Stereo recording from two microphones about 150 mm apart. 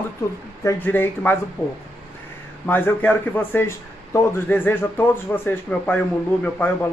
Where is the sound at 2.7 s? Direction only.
15° left (ahead or behind).